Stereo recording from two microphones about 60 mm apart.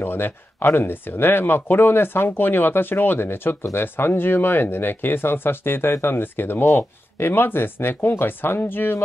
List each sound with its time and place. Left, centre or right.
0.0 s speech: left